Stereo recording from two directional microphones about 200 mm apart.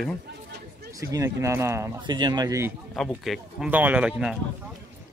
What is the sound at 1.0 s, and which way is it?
Speech, 15° right (ahead or behind).